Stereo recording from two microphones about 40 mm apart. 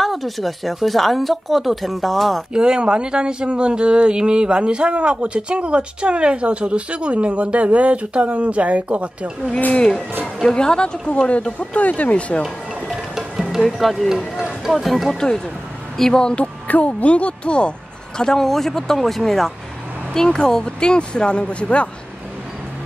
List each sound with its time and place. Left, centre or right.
0.0 s speech: centre
2.5 s speech: right
10.5 s speech: left
11.2 s speech: left
12.9 s music: centre
13.6 s speech: centre
15.1 s speech: centre
16.3 s speech: left; by 19.5 s centre
20.2 s speech: centre